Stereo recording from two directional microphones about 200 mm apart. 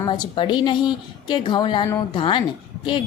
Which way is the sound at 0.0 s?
25° left (ahead or behind).